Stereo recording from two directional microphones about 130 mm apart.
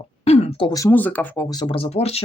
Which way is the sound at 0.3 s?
50° left (ahead or behind).